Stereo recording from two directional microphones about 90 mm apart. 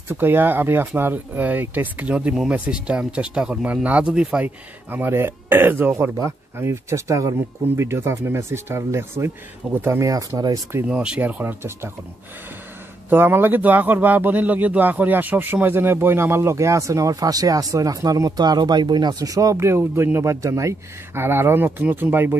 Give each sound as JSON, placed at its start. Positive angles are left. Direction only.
{"t": 0.1, "sound": "speech", "side_deg": -25}
{"t": 4.9, "sound": "speech", "side_deg": -25}
{"t": 6.1, "sound": "speech", "side_deg": -35}
{"t": 10.9, "sound": "speech", "side_deg": -10}
{"t": 13.1, "sound": "speech", "side_deg": -20}